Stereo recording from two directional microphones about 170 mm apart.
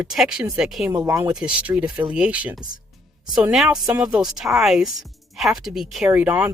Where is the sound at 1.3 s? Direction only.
5° right (ahead or behind).